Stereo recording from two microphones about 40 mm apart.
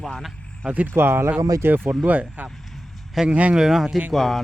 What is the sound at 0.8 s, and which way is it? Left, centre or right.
Speech, right.